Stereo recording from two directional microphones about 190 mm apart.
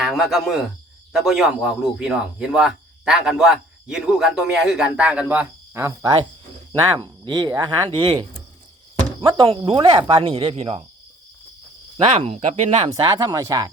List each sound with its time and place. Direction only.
0.0 s a man's voice: centre (ahead or behind); by 10.8 s 30° right (ahead or behind)
11.9 s speech: 30° right (ahead or behind)
12.9 s speech: 20° right (ahead or behind)